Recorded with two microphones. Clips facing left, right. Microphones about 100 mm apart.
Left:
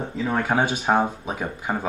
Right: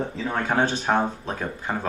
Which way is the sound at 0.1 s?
5° left (ahead or behind).